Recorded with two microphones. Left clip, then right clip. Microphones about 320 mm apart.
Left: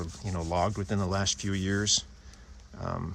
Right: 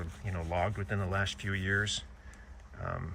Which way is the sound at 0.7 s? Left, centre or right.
Left.